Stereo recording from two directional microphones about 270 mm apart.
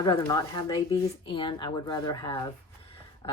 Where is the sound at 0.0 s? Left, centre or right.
Centre.